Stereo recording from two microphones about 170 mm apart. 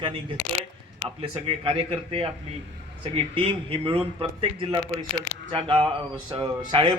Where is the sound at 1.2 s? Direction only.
35° right (ahead or behind).